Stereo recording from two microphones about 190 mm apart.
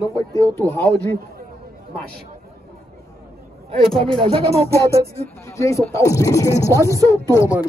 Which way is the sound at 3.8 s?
Centre (ahead or behind).